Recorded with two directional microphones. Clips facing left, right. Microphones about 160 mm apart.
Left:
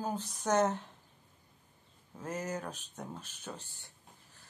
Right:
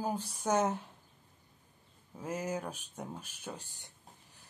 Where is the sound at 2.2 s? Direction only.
10° right (ahead or behind).